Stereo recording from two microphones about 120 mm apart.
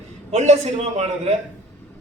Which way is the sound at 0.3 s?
65° right (ahead or behind).